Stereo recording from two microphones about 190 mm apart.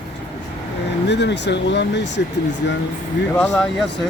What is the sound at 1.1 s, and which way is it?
Speech, 65° left (ahead or behind).